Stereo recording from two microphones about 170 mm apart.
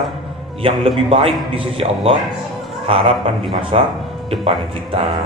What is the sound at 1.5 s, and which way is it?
A man's voice, 30° right (ahead or behind).